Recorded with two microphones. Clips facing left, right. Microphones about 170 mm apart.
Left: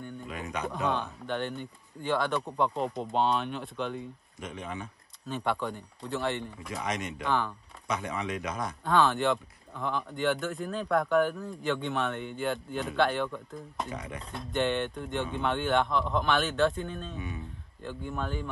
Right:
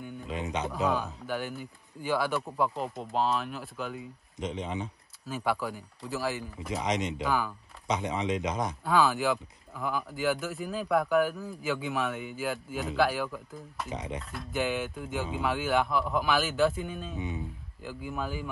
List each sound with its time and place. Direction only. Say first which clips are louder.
0.3 s a man's voice: right 3 dB; 25° right (ahead or behind)
0.7 s speech: even; 5° right (ahead or behind)
4.4 s a man's voice: right 5 dB; 20° right (ahead or behind)
5.2 s speech: even; 5° right (ahead or behind)
6.7 s a man's voice: right 4 dB; 20° right (ahead or behind)
7.2 s speech: left 2 dB; 5° right (ahead or behind)
7.9 s a man's voice: right 3 dB; 20° right (ahead or behind)
8.8 s speech: left 1 dB; 5° right (ahead or behind)
13.9 s a man's voice: right 3 dB; 20° right (ahead or behind)
14.3 s speech: left 3 dB; 5° right (ahead or behind)